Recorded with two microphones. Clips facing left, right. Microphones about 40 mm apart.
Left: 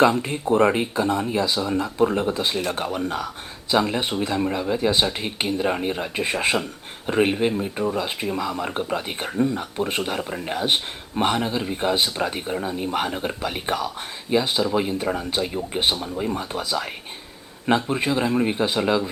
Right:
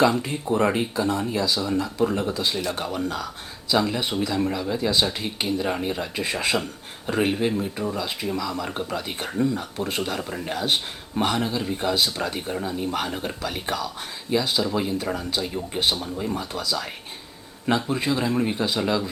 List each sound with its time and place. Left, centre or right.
0.0 s speech: left
10.2 s speech: centre